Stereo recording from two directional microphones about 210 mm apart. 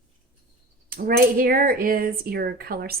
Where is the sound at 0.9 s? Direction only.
40° right (ahead or behind).